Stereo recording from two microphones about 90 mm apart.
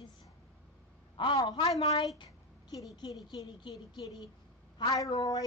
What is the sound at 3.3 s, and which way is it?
Speech, 50° left (ahead or behind).